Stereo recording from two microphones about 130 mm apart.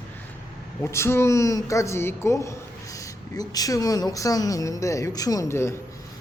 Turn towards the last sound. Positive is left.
turn(degrees=20)  # may be behind; listen again after turning